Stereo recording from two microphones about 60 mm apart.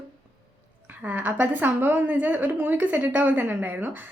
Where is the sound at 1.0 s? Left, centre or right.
Right.